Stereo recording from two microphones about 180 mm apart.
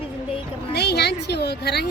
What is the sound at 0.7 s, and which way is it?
A woman's voice, 65° left (ahead or behind).